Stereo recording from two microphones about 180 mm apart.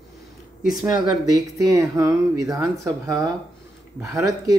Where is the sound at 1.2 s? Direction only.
20° right (ahead or behind).